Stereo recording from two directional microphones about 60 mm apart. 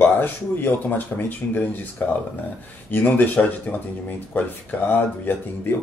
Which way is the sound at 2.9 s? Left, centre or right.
Left.